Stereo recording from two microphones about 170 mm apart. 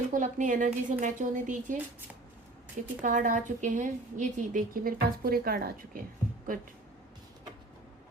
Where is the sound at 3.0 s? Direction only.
50° right (ahead or behind).